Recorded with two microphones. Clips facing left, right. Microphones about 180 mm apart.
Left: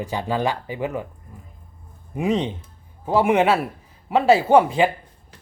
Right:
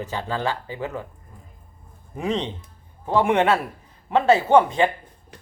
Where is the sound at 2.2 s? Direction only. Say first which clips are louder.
Left 4 dB; 10° left (ahead or behind).